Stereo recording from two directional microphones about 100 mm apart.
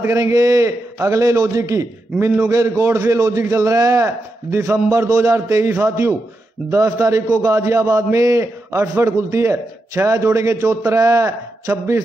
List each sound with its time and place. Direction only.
0.0 s a man's voice: 30° right (ahead or behind)